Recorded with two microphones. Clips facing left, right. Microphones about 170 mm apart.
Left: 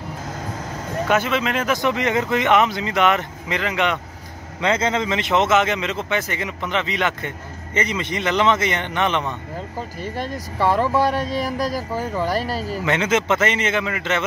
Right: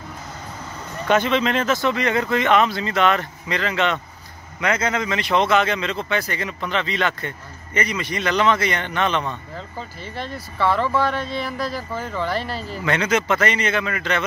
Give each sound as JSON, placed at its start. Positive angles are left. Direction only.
{"t": 1.0, "sound": "speech", "side_deg": 5}
{"t": 9.9, "sound": "speech", "side_deg": 40}
{"t": 10.6, "sound": "speech", "side_deg": 15}
{"t": 11.1, "sound": "speech", "side_deg": 40}
{"t": 12.8, "sound": "speech", "side_deg": 20}